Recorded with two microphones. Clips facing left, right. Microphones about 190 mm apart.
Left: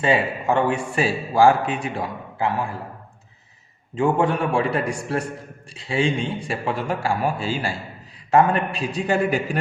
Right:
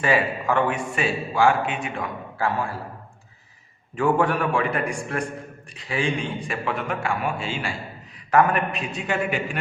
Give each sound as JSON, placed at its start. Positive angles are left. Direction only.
{"t": 0.0, "sound": "speech", "side_deg": 25}
{"t": 2.4, "sound": "a man's voice", "side_deg": 15}
{"t": 3.9, "sound": "a man's voice", "side_deg": 25}
{"t": 8.3, "sound": "speech", "side_deg": 25}